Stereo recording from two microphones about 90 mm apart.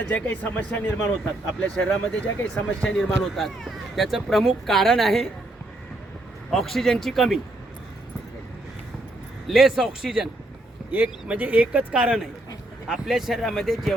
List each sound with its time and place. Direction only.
0.1 s speech: 15° left (ahead or behind)
6.5 s speech: 5° left (ahead or behind)
9.5 s speech: 5° right (ahead or behind)
10.9 s speech: 20° right (ahead or behind); by 13.9 s centre (ahead or behind)